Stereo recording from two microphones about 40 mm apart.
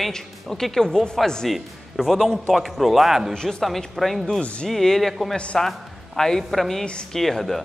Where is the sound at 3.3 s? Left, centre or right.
Centre.